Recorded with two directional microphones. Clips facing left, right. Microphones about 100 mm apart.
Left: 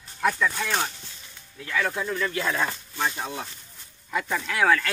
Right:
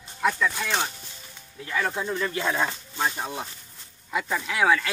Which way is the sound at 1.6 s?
20° right (ahead or behind).